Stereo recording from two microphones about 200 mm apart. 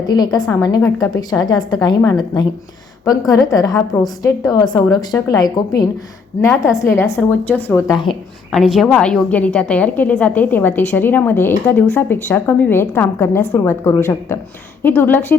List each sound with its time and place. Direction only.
0.1 s a woman's voice: 20° left (ahead or behind)
7.9 s a woman's voice: 25° left (ahead or behind)
8.5 s a woman's voice: centre (ahead or behind)